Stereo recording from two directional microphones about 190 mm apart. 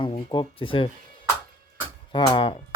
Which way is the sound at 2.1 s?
25° left (ahead or behind).